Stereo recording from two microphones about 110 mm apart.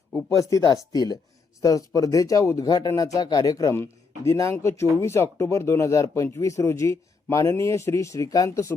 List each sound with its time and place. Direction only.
0.1 s speech: 30° left (ahead or behind)